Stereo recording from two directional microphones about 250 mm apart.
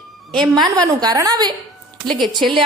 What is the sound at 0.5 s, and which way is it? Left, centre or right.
Speech, centre.